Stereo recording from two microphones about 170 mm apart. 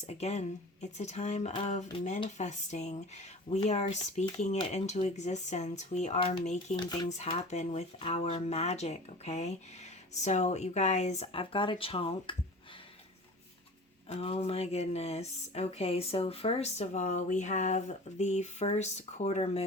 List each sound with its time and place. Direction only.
0.0 s speech: 40° left (ahead or behind)
14.1 s speech: 35° left (ahead or behind)